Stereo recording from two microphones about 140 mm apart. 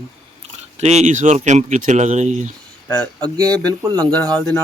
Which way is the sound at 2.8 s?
5° left (ahead or behind).